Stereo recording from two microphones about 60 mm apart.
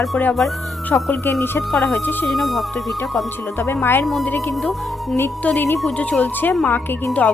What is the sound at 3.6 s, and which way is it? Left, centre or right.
Speech, left.